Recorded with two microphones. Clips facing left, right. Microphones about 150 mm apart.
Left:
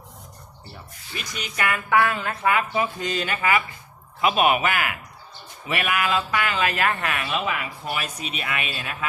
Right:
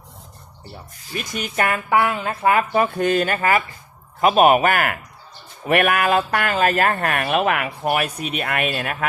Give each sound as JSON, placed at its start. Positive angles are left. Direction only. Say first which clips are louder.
{"t": 1.1, "sound": "speech", "louder": "right 8 dB", "side_deg": -50}
{"t": 1.9, "sound": "speech", "louder": "left 1 dB", "side_deg": -25}
{"t": 2.5, "sound": "speech", "louder": "right 5 dB", "side_deg": -50}